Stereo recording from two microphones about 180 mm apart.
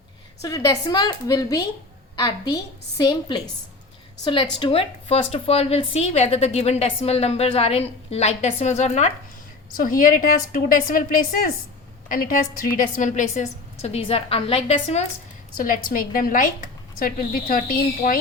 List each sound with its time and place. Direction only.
0.4 s a woman's voice: 20° left (ahead or behind); by 9.1 s 40° left (ahead or behind)
9.7 s a woman's voice: 50° left (ahead or behind); by 15.0 s 35° left (ahead or behind)
15.5 s a woman's voice: 50° left (ahead or behind)